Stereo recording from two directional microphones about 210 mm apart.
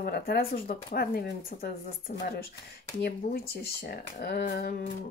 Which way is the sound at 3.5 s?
45° left (ahead or behind).